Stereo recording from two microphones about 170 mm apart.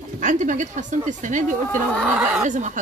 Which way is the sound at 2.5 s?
45° right (ahead or behind).